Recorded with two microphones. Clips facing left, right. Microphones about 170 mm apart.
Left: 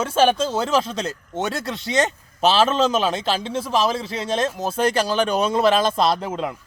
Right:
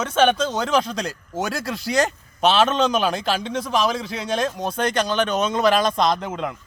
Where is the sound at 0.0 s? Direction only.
30° left (ahead or behind).